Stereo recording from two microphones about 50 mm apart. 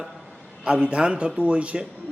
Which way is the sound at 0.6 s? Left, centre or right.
Right.